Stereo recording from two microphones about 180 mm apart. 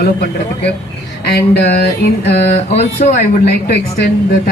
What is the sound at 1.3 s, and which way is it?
Speech, 65° left (ahead or behind).